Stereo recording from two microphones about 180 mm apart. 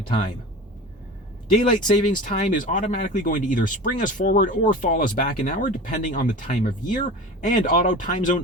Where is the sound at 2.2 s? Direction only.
45° left (ahead or behind).